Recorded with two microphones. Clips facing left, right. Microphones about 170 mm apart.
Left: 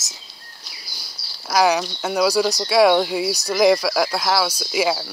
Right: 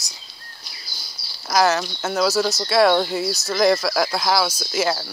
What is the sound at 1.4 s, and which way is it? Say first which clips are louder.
Speech: left 1 dB; 10° left (ahead or behind).